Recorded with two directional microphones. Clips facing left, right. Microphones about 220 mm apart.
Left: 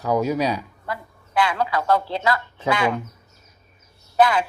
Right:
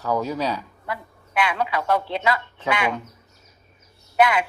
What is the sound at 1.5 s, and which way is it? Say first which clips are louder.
Speech: left 1 dB; 15° right (ahead or behind).